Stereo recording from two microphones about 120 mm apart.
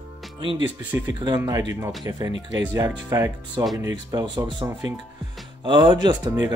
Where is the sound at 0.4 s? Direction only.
45° right (ahead or behind).